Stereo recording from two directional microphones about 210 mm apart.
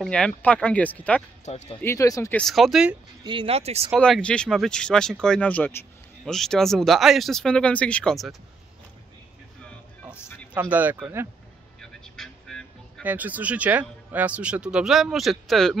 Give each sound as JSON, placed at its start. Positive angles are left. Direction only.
{"t": 0.0, "sound": "speech", "side_deg": 5}
{"t": 1.4, "sound": "speech", "side_deg": 30}
{"t": 1.8, "sound": "speech", "side_deg": 15}
{"t": 2.4, "sound": "speech", "side_deg": 0}
{"t": 3.3, "sound": "speech", "side_deg": -25}
{"t": 4.0, "sound": "speech", "side_deg": 5}
{"t": 10.5, "sound": "speech", "side_deg": -10}
{"t": 11.8, "sound": "music", "side_deg": 0}
{"t": 13.0, "sound": "speech", "side_deg": -10}